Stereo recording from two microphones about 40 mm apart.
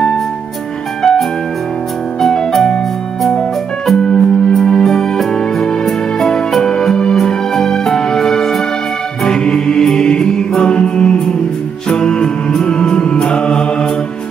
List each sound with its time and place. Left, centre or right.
2.1 s music: centre
3.8 s music: centre